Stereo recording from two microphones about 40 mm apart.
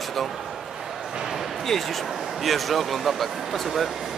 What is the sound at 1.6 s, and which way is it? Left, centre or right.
Speech, centre.